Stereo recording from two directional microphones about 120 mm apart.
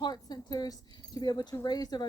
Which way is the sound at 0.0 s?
35° left (ahead or behind).